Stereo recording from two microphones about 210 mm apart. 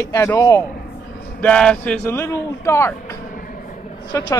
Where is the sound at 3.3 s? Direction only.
40° left (ahead or behind).